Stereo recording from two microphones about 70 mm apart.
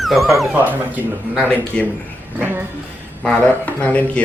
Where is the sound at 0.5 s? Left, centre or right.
Right.